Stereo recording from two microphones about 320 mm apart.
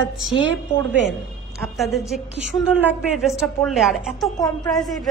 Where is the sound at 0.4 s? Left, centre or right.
Right.